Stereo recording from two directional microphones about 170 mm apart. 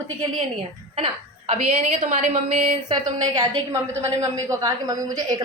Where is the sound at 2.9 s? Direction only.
20° right (ahead or behind).